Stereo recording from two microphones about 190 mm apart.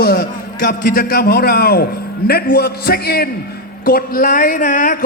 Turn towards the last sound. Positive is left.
turn(degrees=45)  # may be behind; listen again after turning